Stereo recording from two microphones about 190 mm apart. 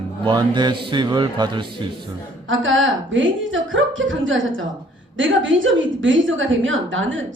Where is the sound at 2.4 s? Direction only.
90° right.